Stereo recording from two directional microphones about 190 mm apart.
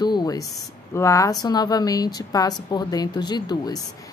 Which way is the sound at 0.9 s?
15° left (ahead or behind).